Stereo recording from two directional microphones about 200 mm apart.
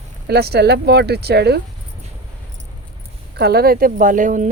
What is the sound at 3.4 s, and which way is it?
Speech, 50° right (ahead or behind).